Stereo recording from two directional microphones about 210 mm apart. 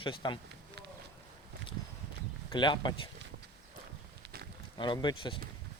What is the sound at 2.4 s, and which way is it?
Speech, 20° left (ahead or behind).